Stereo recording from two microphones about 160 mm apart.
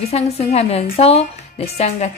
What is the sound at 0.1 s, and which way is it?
Speech, 40° left (ahead or behind).